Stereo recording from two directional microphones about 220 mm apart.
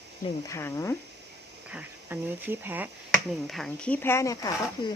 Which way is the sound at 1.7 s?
10° right (ahead or behind).